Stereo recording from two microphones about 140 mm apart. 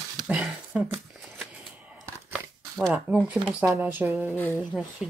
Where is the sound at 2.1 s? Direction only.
15° right (ahead or behind).